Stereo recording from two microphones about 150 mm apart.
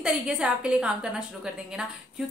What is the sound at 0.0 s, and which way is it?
A woman's voice, 5° right (ahead or behind).